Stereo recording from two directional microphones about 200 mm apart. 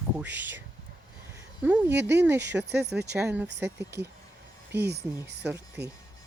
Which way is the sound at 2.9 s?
5° right (ahead or behind).